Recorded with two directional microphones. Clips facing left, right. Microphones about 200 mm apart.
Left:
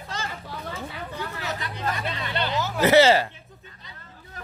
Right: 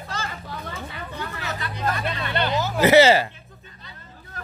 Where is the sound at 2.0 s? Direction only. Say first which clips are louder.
Right 3 dB; 60° right (ahead or behind).